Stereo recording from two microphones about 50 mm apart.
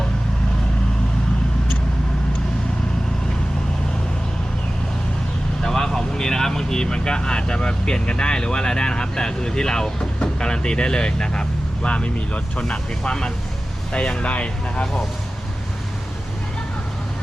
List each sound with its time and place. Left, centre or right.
5.6 s speech: centre